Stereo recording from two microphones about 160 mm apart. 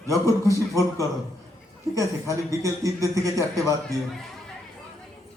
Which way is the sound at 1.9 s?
20° right (ahead or behind).